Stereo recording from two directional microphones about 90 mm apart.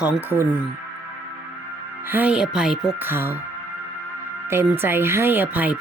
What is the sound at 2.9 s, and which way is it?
Speech, 25° right (ahead or behind).